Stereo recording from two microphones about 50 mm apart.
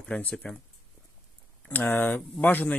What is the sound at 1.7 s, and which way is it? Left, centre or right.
Speech, left.